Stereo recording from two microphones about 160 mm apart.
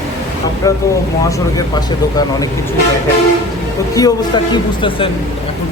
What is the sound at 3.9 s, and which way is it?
A woman's voice, 25° left (ahead or behind).